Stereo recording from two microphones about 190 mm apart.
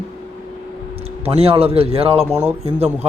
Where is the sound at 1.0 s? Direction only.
30° right (ahead or behind).